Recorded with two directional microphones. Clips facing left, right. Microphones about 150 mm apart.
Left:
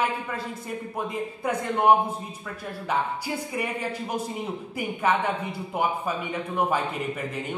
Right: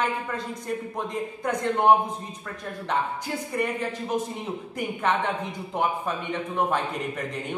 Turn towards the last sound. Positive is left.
turn(degrees=5)  # may be behind; listen again after turning